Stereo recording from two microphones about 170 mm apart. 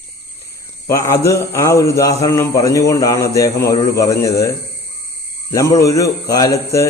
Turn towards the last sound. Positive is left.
turn(degrees=20)  # may be behind; listen again after turning